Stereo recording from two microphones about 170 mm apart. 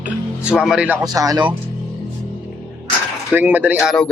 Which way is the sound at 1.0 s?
20° right (ahead or behind).